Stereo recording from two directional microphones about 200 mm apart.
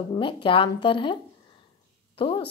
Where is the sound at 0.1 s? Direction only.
25° left (ahead or behind).